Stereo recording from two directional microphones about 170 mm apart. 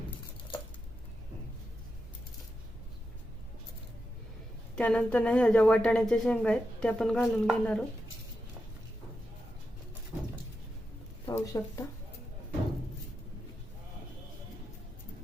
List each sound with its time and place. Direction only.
4.7 s a woman's voice: 5° left (ahead or behind)
11.3 s speech: 15° left (ahead or behind)